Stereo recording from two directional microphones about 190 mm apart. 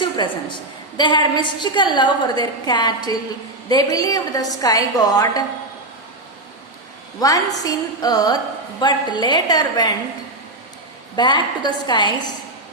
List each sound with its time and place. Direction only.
0.0 s a woman's voice: 25° left (ahead or behind)
7.2 s a woman's voice: 20° left (ahead or behind)
11.2 s a woman's voice: 25° left (ahead or behind)